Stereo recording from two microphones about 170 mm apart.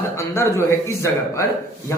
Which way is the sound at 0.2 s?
15° left (ahead or behind).